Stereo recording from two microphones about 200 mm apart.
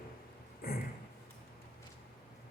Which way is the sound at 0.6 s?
50° left (ahead or behind).